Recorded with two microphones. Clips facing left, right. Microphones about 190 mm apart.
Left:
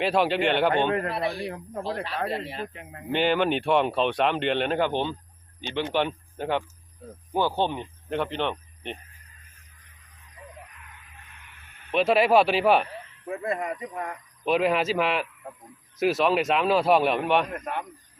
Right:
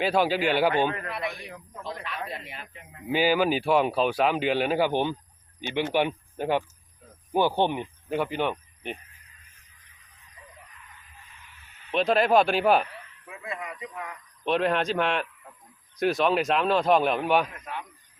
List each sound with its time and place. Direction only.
0.0 s speech: centre (ahead or behind)
0.9 s speech: 35° left (ahead or behind)
1.5 s speech: 55° left (ahead or behind)
2.3 s speech: 35° left (ahead or behind)
3.1 s speech: 5° right (ahead or behind)
11.2 s vehicle: 60° left (ahead or behind)
11.9 s speech: 5° left (ahead or behind)
12.9 s speech: 45° left (ahead or behind)
14.4 s speech: 5° left (ahead or behind)
17.5 s speech: 55° left (ahead or behind)